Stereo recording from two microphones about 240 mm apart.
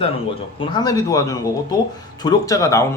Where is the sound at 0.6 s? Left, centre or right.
Centre.